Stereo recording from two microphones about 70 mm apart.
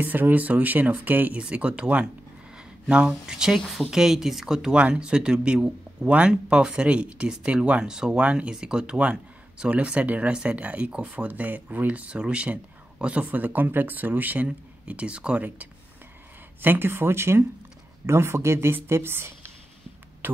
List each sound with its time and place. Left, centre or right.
0.0 s speech: right; by 3.6 s centre
3.6 s speech: centre
3.9 s speech: centre; by 19.3 s right